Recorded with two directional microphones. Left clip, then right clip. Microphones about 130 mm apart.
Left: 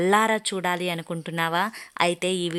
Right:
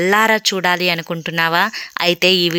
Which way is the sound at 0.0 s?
10° right (ahead or behind).